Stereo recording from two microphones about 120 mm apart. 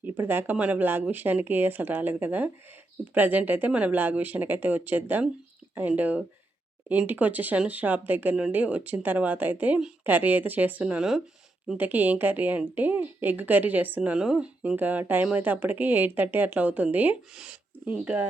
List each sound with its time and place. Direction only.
0.0 s a woman's voice: 15° right (ahead or behind)